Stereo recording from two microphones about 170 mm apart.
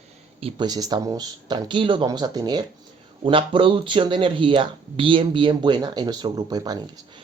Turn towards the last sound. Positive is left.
turn(degrees=-25)  # may be behind; listen again after turning